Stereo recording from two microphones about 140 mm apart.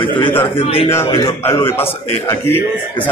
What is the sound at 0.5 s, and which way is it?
Speech, 40° left (ahead or behind).